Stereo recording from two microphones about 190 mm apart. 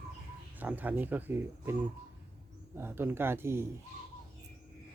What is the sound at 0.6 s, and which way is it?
Speech, 10° right (ahead or behind).